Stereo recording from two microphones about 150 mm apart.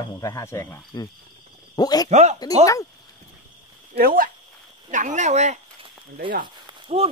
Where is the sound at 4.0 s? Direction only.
75° right (ahead or behind).